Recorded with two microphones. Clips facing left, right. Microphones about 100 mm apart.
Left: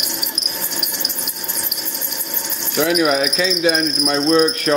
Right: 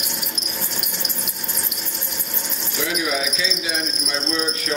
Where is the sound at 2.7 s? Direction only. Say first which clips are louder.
Left 8 dB; 60° left (ahead or behind).